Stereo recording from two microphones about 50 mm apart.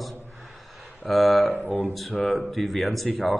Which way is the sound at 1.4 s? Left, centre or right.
Left.